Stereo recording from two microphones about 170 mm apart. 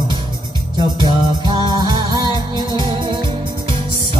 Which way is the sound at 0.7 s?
25° right (ahead or behind).